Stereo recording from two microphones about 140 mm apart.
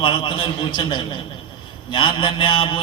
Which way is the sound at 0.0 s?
35° left (ahead or behind).